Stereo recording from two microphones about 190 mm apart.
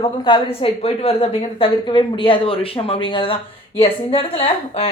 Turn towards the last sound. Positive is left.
turn(degrees=30)  # may be behind; listen again after turning